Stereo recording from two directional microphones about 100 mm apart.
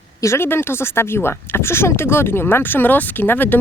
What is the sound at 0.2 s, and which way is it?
Speech, 25° left (ahead or behind).